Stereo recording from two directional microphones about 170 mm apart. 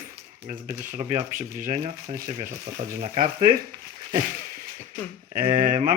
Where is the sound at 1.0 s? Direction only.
40° right (ahead or behind).